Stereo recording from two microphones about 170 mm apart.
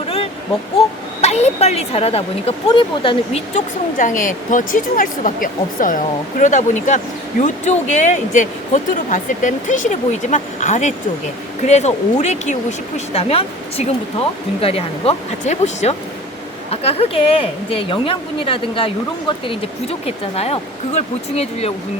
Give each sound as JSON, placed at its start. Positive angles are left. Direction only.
{"t": 1.2, "sound": "speech", "side_deg": 40}
{"t": 20.1, "sound": "speech", "side_deg": 35}